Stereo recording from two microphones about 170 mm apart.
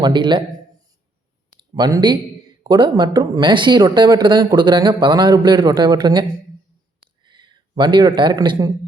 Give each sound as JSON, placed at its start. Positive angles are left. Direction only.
{"t": 0.0, "sound": "speech", "side_deg": -25}
{"t": 1.7, "sound": "speech", "side_deg": -25}
{"t": 7.0, "sound": "a sound", "side_deg": -30}